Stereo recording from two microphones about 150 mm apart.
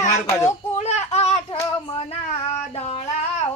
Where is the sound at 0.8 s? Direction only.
45° left (ahead or behind).